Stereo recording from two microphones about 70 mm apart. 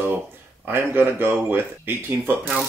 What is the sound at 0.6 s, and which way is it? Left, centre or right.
Speech, right.